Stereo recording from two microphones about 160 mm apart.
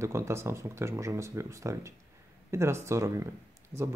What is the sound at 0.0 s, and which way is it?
Speech, 15° right (ahead or behind).